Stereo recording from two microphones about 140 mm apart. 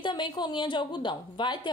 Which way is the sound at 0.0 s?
35° left (ahead or behind).